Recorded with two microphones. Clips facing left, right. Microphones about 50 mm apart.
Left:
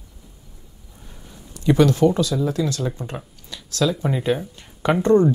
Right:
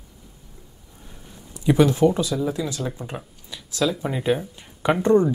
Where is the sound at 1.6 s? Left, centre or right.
Centre.